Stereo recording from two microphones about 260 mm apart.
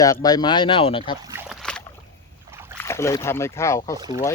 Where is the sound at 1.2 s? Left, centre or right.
Centre.